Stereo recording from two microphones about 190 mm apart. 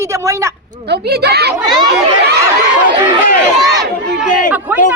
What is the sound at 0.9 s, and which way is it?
Speech, 60° right (ahead or behind).